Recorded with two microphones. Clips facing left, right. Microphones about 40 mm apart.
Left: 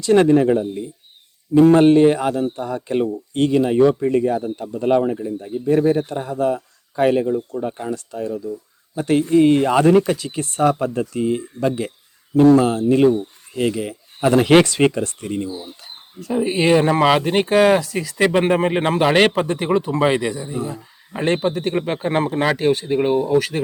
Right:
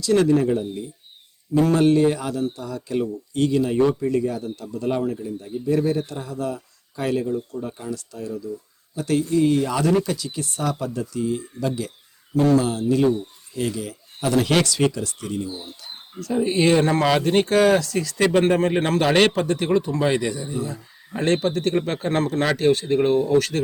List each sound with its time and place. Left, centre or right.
0.0 s speech: left
16.2 s speech: centre
19.3 s speech: left
20.5 s speech: left
20.7 s speech: centre